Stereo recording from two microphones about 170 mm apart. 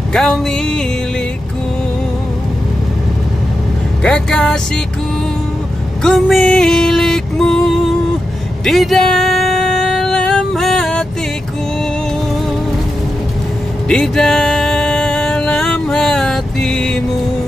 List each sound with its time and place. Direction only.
0.1 s music: 5° left (ahead or behind)
4.0 s music: 5° left (ahead or behind)
6.0 s music: centre (ahead or behind)
13.8 s music: 5° left (ahead or behind)